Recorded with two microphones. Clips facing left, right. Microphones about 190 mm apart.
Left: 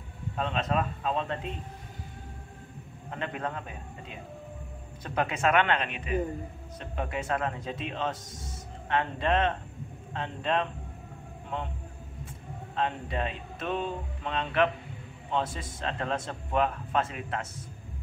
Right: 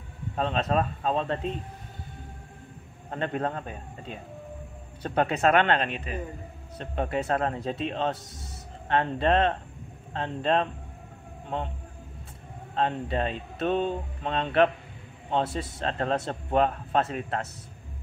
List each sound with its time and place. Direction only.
0.4 s speech: 35° right (ahead or behind)
3.1 s speech: 40° right (ahead or behind)
12.7 s speech: 35° right (ahead or behind)